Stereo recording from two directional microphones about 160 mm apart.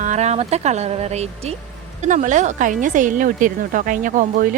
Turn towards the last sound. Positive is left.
turn(degrees=-60)  # may be behind; listen again after turning